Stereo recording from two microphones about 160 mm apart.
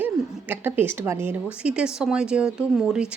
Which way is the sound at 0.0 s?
10° right (ahead or behind).